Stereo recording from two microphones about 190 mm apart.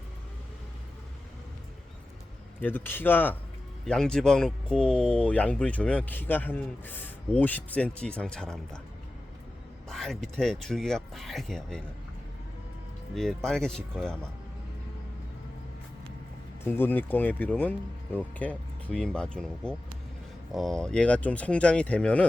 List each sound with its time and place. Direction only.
2.6 s speech: 10° left (ahead or behind)
9.9 s speech: centre (ahead or behind)
13.1 s speech: centre (ahead or behind)
16.6 s speech: 10° left (ahead or behind)